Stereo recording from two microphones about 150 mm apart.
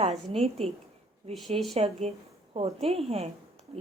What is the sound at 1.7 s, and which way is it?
A woman's voice, 40° right (ahead or behind).